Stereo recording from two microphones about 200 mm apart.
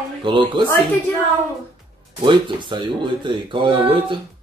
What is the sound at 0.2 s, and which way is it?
Speech, 25° right (ahead or behind).